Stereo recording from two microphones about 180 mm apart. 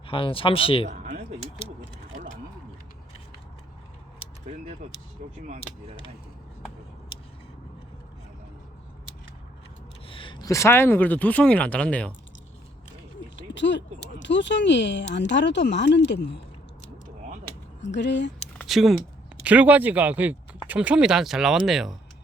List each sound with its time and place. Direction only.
0.1 s speech: 30° left (ahead or behind)
0.9 s a sound: 45° right (ahead or behind)
4.8 s speech: 40° right (ahead or behind)
10.1 s speech: 30° left (ahead or behind); by 12.1 s 5° left (ahead or behind)
13.5 s speech: 80° left
17.8 s speech: 75° left (ahead or behind)
18.5 s speech: centre (ahead or behind)